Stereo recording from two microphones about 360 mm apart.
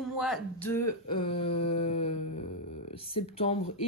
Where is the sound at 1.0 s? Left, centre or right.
Centre.